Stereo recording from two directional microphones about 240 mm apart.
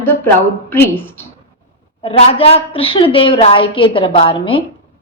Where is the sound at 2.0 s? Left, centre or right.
Left.